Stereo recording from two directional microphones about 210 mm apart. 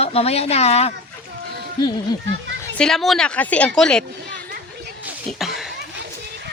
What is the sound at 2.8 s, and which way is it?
Speech, centre (ahead or behind).